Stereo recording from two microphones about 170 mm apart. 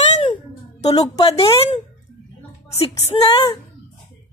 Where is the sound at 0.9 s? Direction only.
25° left (ahead or behind).